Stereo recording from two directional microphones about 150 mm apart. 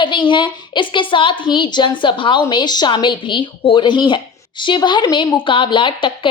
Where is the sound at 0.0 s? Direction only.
30° left (ahead or behind).